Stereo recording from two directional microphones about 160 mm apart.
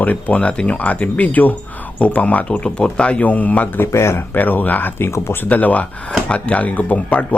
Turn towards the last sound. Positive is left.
turn(degrees=10)  # may be behind; listen again after turning